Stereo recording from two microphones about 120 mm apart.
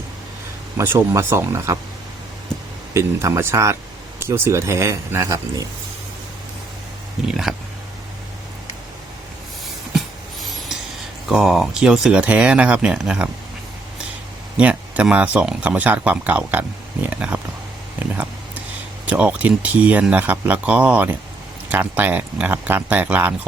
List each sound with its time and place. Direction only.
0.8 s speech: 25° right (ahead or behind)
2.9 s speech: 25° right (ahead or behind)
7.3 s speech: 5° right (ahead or behind)
11.3 s speech: 5° right (ahead or behind)
14.5 s speech: 10° right (ahead or behind)
18.0 s a sound: 15° right (ahead or behind)
19.0 s speech: 10° right (ahead or behind)